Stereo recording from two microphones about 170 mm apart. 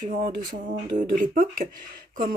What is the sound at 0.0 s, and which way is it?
Speech, 50° right (ahead or behind).